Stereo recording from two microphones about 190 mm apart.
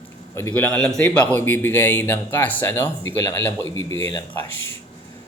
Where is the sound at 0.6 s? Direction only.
5° left (ahead or behind).